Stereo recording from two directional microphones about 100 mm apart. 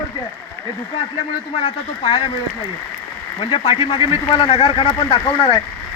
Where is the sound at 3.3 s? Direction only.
65° left (ahead or behind).